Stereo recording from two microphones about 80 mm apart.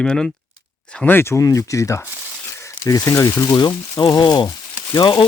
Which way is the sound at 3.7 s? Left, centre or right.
Left.